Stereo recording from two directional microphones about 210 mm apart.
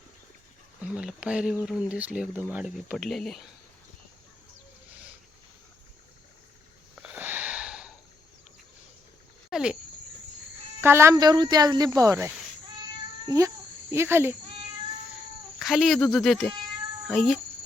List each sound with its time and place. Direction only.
0.8 s speech: 5° right (ahead or behind)
6.9 s wheeze: 5° right (ahead or behind)
9.5 s a sound: 5° right (ahead or behind)
10.8 s a child's voice: 10° right (ahead or behind)
15.5 s speech: centre (ahead or behind)